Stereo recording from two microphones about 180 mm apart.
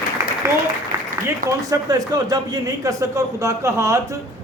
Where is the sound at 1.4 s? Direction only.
20° right (ahead or behind).